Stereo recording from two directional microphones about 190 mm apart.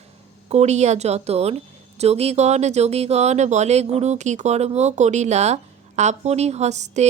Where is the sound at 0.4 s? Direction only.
35° right (ahead or behind).